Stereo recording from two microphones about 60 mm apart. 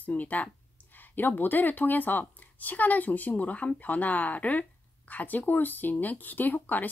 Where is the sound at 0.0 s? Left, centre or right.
Left.